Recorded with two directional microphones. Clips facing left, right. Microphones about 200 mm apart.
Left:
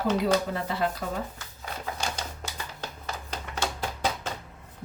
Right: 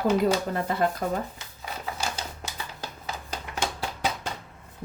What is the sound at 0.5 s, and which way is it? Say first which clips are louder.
Speech: right 3 dB; 50° right (ahead or behind).